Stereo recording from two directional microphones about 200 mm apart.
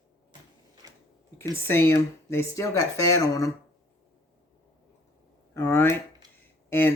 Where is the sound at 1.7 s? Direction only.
10° left (ahead or behind).